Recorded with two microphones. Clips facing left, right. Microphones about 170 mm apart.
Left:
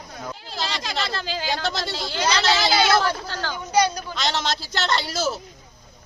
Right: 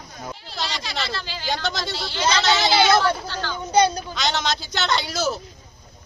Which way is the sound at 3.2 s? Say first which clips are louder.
Even; 40° left (ahead or behind).